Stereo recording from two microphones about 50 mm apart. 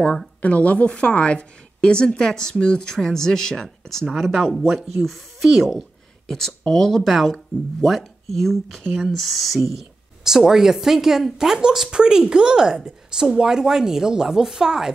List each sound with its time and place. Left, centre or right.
0.4 s a woman's voice: left; by 4.0 s centre
4.0 s speech: centre